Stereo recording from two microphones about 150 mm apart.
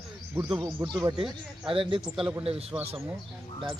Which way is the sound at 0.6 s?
20° right (ahead or behind).